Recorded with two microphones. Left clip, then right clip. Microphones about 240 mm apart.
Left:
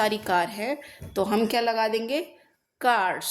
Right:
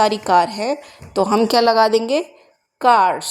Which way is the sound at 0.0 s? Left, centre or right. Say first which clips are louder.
Right 9 dB; right.